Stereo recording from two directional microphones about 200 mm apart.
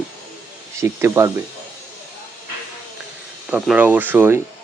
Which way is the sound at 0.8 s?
15° right (ahead or behind).